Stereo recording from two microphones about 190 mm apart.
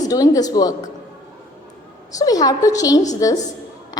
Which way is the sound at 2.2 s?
20° left (ahead or behind).